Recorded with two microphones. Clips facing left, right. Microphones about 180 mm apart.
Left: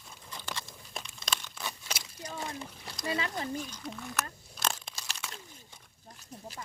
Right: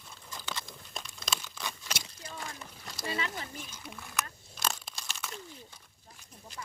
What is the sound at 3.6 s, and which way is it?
Speech, 5° right (ahead or behind).